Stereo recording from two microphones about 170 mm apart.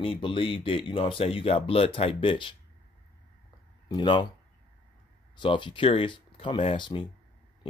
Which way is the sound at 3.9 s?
25° left (ahead or behind).